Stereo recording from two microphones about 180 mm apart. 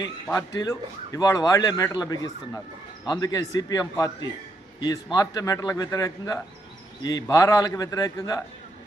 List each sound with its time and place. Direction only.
0.6 s a man's voice: 15° left (ahead or behind)